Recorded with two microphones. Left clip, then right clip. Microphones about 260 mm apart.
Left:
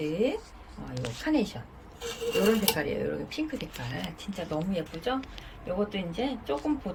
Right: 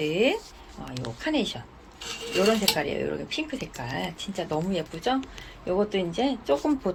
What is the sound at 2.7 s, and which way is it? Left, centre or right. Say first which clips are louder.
Speech: right 2 dB; centre.